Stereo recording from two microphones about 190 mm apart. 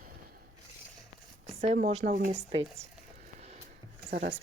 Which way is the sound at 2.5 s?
30° right (ahead or behind).